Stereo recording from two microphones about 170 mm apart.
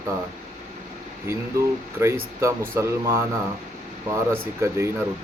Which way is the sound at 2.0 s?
15° right (ahead or behind).